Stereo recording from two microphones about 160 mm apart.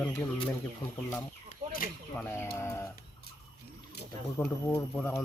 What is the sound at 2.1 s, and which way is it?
Speech, 15° left (ahead or behind).